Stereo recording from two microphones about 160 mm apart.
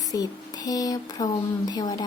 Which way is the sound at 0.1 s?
25° left (ahead or behind).